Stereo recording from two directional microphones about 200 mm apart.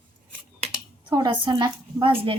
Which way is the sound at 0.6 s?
25° right (ahead or behind).